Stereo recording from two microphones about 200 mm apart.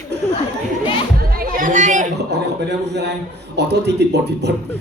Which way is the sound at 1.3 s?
45° right (ahead or behind).